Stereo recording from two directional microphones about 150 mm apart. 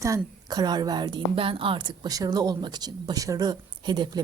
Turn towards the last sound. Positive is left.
turn(degrees=-30)  # may be behind; listen again after turning